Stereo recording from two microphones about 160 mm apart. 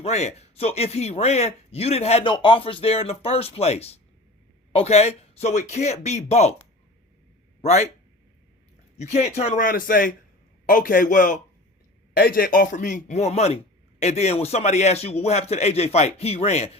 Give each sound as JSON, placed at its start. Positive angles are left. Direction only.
{"t": 0.0, "sound": "speech", "side_deg": 45}
{"t": 7.6, "sound": "speech", "side_deg": 45}
{"t": 9.0, "sound": "a man's voice", "side_deg": 45}
{"t": 12.1, "sound": "speech", "side_deg": 65}